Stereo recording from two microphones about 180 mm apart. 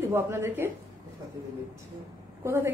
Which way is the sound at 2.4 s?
15° right (ahead or behind).